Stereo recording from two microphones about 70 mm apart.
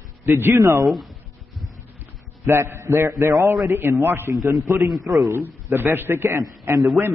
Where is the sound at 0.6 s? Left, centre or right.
Right.